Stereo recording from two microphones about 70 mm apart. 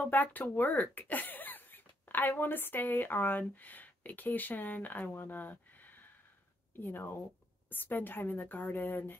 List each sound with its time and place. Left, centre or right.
0.0 s a woman's voice: left